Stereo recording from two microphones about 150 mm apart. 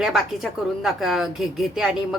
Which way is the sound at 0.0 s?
Centre (ahead or behind).